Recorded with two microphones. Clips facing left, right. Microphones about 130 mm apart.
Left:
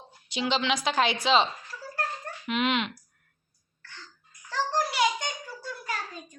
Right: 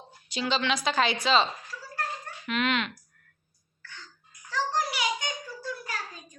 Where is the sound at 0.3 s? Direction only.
15° left (ahead or behind).